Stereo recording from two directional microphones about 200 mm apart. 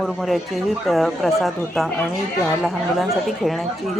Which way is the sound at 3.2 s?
Centre (ahead or behind).